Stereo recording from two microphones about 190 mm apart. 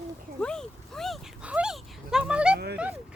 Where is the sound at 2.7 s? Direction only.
5° right (ahead or behind).